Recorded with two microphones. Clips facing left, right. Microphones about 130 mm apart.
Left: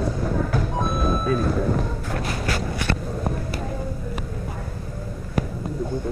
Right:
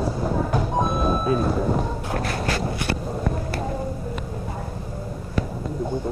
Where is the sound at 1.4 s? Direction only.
5° right (ahead or behind).